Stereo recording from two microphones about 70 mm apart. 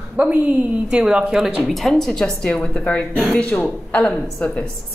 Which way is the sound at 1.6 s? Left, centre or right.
Centre.